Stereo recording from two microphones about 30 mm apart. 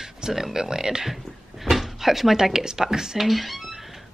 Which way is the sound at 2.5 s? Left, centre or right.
Right.